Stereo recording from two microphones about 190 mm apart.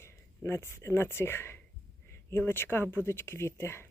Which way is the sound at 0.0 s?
15° left (ahead or behind).